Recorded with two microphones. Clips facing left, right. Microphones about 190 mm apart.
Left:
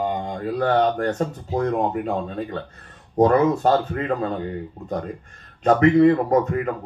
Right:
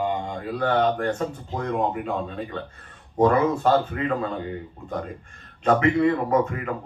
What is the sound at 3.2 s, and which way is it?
Mantra, 40° left (ahead or behind).